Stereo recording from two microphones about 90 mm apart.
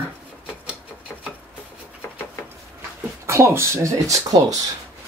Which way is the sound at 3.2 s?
30° right (ahead or behind).